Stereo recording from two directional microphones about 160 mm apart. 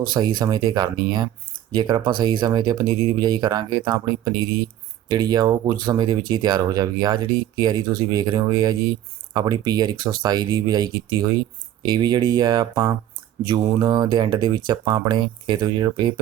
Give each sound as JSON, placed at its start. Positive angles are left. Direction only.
{"t": 0.1, "sound": "speech", "side_deg": -25}